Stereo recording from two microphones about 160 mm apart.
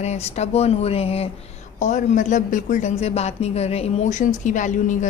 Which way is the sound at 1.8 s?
50° left (ahead or behind).